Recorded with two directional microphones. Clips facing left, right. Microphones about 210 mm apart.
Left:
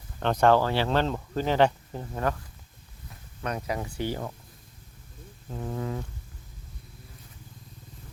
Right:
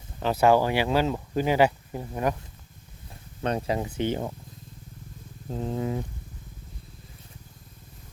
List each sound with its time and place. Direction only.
0.2 s speech: 5° right (ahead or behind)
3.1 s speech: 30° right (ahead or behind)
5.5 s a sound: 25° right (ahead or behind)